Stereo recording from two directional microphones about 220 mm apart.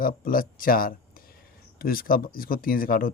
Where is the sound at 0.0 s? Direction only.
40° left (ahead or behind).